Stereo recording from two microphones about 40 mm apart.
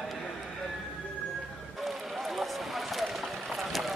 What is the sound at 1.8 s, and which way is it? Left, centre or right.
Run, centre.